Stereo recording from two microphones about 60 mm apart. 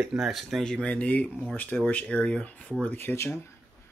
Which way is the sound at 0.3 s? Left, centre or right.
Centre.